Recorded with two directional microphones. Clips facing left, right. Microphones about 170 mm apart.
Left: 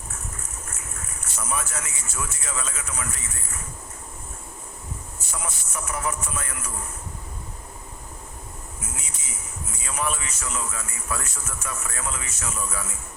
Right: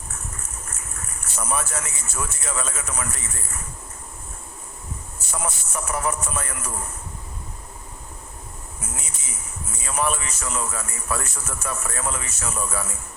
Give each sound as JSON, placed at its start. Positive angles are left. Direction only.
{"t": 1.4, "sound": "speech", "side_deg": -45}
{"t": 5.3, "sound": "speech", "side_deg": -50}
{"t": 9.8, "sound": "speech", "side_deg": -45}